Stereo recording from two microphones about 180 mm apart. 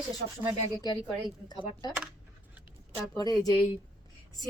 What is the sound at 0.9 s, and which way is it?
Speech, 25° left (ahead or behind).